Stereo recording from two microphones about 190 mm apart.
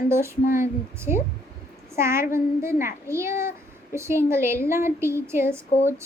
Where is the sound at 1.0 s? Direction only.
10° right (ahead or behind).